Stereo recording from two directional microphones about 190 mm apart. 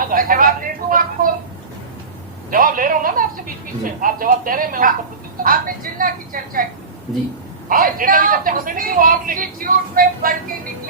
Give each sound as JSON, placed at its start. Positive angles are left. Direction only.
{"t": 0.1, "sound": "a woman's voice", "side_deg": -45}
{"t": 2.5, "sound": "a woman's voice", "side_deg": -45}
{"t": 7.7, "sound": "a woman's voice", "side_deg": -50}